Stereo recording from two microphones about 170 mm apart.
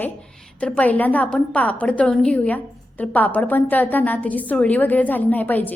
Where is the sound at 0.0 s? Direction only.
5° left (ahead or behind).